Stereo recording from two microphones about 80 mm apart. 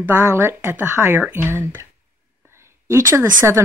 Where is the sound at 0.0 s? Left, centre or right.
Right.